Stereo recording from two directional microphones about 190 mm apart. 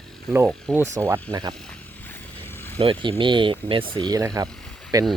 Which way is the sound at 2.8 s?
30° right (ahead or behind).